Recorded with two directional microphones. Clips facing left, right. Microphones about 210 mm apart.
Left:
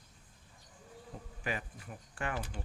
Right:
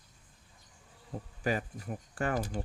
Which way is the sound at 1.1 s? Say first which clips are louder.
Right 9 dB; 40° right (ahead or behind).